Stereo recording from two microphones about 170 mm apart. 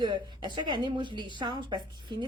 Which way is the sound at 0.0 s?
25° right (ahead or behind).